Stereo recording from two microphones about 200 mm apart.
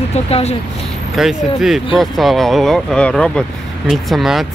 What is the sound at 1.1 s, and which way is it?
Speech, centre (ahead or behind).